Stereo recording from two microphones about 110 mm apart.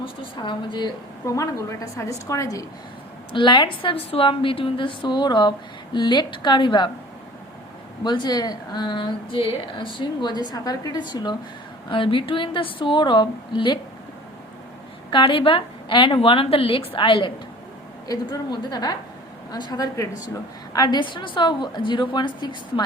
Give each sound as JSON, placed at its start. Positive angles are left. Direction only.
{"t": 0.0, "sound": "a woman's voice", "side_deg": 50}
{"t": 1.2, "sound": "a woman's voice", "side_deg": 30}
{"t": 3.3, "sound": "a woman's voice", "side_deg": 45}
{"t": 8.0, "sound": "speech", "side_deg": 40}
{"t": 11.9, "sound": "a woman's voice", "side_deg": 50}
{"t": 15.1, "sound": "a woman's voice", "side_deg": 50}
{"t": 18.1, "sound": "a woman's voice", "side_deg": 35}